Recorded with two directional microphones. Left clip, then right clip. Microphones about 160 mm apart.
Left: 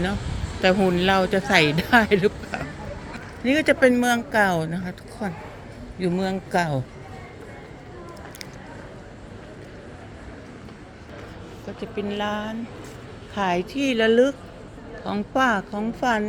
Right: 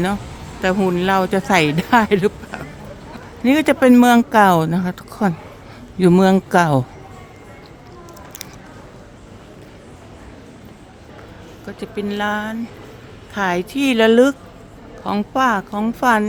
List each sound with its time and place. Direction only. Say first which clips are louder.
0.6 s speech: right 1 dB; 15° right (ahead or behind)
3.4 s a woman's voice: right 4 dB; 35° right (ahead or behind)
11.8 s a woman's voice: right 5 dB; 35° right (ahead or behind)
15.3 s speech: right 3 dB; 15° right (ahead or behind)
15.8 s a woman's voice: right 7 dB; 35° right (ahead or behind)